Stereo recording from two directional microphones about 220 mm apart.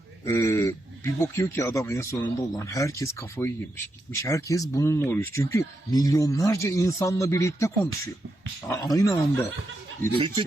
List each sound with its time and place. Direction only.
0.3 s speech: 15° left (ahead or behind)
10.2 s speech: 25° right (ahead or behind)